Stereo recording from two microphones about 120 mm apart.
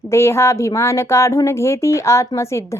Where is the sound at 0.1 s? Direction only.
20° left (ahead or behind).